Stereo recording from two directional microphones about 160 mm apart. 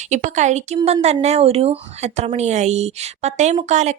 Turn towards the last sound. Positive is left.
turn(degrees=-50)  # may be behind; listen again after turning